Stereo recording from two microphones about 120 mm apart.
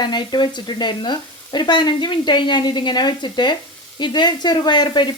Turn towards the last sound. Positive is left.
turn(degrees=35)  # may be behind; listen again after turning